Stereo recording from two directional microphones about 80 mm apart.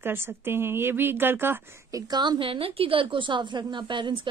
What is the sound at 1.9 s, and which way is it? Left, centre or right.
A woman's voice, right.